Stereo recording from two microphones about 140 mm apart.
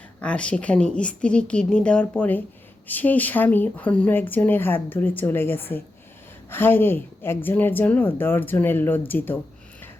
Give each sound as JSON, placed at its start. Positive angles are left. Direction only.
{"t": 0.2, "sound": "speech", "side_deg": 10}